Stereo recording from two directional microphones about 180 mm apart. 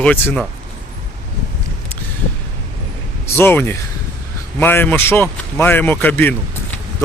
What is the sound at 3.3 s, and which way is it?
A man's voice, 10° left (ahead or behind).